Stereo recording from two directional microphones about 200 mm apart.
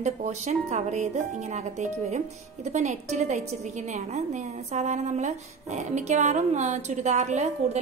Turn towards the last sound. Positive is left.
turn(degrees=-35)  # may be behind; listen again after turning